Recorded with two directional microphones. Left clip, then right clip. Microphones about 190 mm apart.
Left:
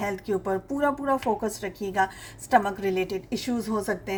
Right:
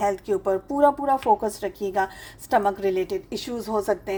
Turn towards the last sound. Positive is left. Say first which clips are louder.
# right 4 dB
turn(degrees=-40)  # may be behind; listen again after turning